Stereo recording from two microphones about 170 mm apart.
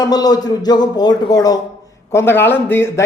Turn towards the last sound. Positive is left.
turn(degrees=15)  # may be behind; listen again after turning